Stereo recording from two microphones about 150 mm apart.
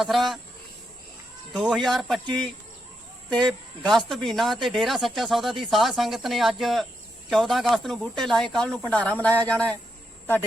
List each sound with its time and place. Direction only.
0.0 s speech: centre (ahead or behind)
1.5 s speech: centre (ahead or behind)
3.2 s a man's voice: 5° left (ahead or behind)